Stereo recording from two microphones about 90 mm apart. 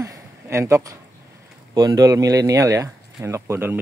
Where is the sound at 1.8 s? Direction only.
45° right (ahead or behind).